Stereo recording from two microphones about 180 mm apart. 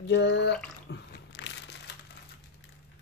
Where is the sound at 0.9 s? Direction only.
80° left.